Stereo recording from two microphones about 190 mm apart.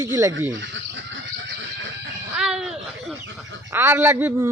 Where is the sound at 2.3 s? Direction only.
5° right (ahead or behind).